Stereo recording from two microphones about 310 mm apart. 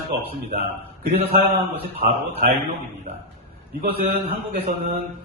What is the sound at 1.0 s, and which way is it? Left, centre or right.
Speech, right.